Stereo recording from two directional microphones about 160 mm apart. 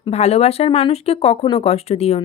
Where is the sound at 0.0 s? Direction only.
40° left (ahead or behind).